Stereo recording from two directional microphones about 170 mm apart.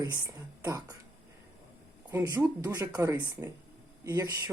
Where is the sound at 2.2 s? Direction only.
25° right (ahead or behind).